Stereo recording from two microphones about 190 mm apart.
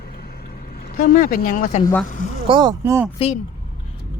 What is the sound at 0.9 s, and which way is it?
Speech, 45° left (ahead or behind).